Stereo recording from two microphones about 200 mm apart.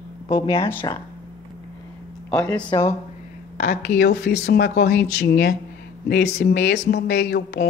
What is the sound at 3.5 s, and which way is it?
Speech, 50° left (ahead or behind).